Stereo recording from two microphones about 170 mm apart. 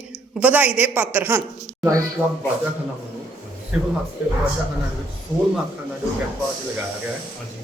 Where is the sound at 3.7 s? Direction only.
Centre (ahead or behind).